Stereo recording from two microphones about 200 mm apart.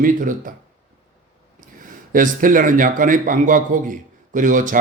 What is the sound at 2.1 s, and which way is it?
A man's voice, 40° right (ahead or behind).